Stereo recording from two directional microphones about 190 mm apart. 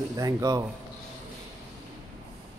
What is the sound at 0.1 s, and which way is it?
Speech, 20° right (ahead or behind).